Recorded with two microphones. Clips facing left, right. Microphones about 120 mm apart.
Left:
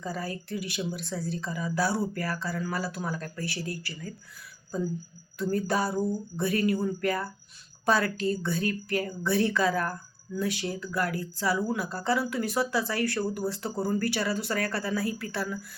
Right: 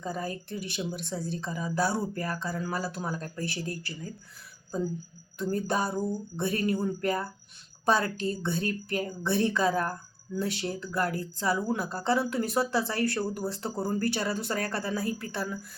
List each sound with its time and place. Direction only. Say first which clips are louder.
0.0 s speech: even; 20° right (ahead or behind)
5.4 s speech: left 1 dB; 20° right (ahead or behind)